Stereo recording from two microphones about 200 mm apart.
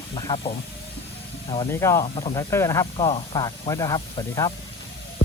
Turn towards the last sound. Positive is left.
turn(degrees=20)  # may be behind; listen again after turning